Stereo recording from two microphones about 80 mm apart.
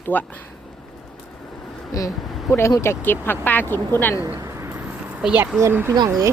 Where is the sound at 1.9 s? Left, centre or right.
Left.